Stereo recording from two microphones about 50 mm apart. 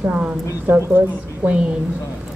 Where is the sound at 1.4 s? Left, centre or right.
Right.